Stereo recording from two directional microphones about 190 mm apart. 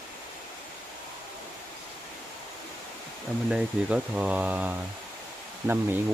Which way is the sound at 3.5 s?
5° right (ahead or behind).